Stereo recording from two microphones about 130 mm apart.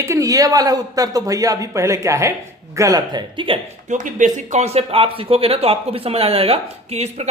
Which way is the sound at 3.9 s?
80° right.